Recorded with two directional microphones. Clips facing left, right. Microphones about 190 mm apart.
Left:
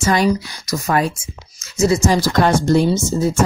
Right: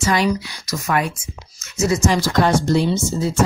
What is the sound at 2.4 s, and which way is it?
Speech, 50° left (ahead or behind).